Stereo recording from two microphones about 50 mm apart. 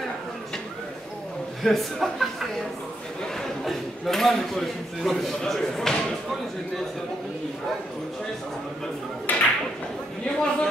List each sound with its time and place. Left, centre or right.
1.6 s speech: centre
3.3 s speech: centre
9.3 s speech: left
10.2 s a man's voice: centre